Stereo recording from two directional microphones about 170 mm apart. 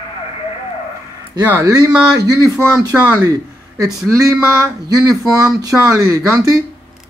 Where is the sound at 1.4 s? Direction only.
15° right (ahead or behind).